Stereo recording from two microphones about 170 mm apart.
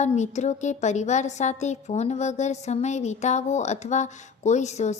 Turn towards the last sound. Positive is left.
turn(degrees=40)  # may be behind; listen again after turning